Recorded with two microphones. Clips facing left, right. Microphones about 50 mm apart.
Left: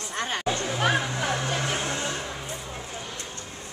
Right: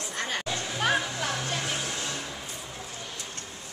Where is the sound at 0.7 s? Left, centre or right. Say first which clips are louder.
Left 1 dB; centre.